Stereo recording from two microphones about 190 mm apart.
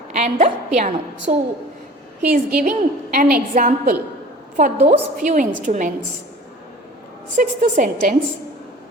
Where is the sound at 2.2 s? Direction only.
50° right (ahead or behind).